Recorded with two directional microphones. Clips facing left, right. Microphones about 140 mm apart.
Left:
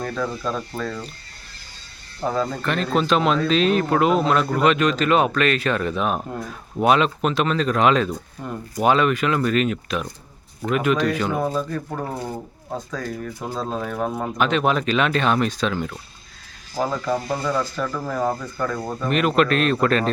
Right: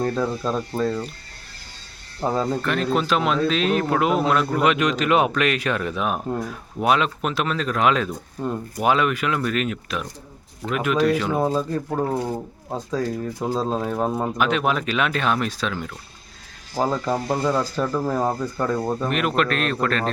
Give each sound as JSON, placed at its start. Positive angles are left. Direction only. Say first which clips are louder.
{"t": 0.0, "sound": "speech", "louder": "right 3 dB", "side_deg": -30}
{"t": 2.2, "sound": "speech", "louder": "even", "side_deg": -25}
{"t": 2.6, "sound": "speech", "louder": "left 1 dB", "side_deg": -5}
{"t": 8.4, "sound": "speech", "louder": "right 9 dB", "side_deg": -25}
{"t": 8.8, "sound": "speech", "louder": "left 2 dB", "side_deg": -5}
{"t": 11.3, "sound": "speech", "louder": "right 2 dB", "side_deg": -25}
{"t": 14.3, "sound": "speech", "louder": "left 5 dB", "side_deg": -5}
{"t": 16.7, "sound": "speech", "louder": "right 1 dB", "side_deg": -25}
{"t": 19.0, "sound": "speech", "louder": "left 6 dB", "side_deg": -5}